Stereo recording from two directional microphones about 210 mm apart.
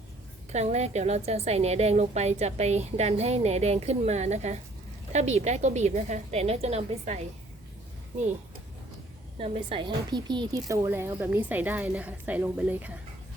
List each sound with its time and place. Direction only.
0.5 s a woman's voice: 30° right (ahead or behind)
9.4 s a woman's voice: 25° right (ahead or behind); by 12.9 s 5° right (ahead or behind)